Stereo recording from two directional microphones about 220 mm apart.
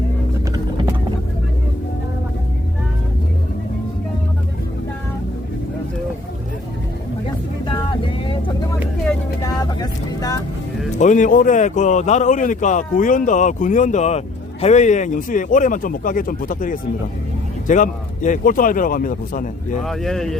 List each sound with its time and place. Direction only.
9.4 s vehicle: 15° left (ahead or behind)
10.9 s speech: 35° left (ahead or behind)
19.8 s speech: centre (ahead or behind)